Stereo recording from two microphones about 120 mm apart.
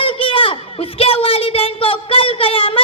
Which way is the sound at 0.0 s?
50° left (ahead or behind).